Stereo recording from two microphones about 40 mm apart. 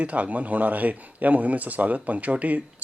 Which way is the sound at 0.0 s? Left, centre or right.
Right.